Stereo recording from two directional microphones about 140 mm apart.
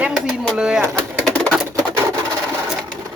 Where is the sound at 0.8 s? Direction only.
20° right (ahead or behind).